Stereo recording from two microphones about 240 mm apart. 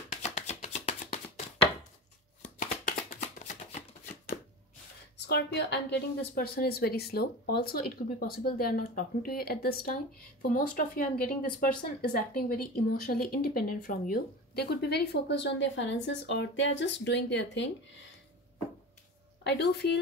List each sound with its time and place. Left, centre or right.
0.1 s chopping: left
2.4 s shuffling cards: left
5.1 s a woman's voice: left
19.4 s speech: left